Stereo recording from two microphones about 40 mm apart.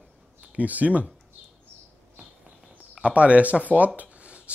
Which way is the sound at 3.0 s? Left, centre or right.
Right.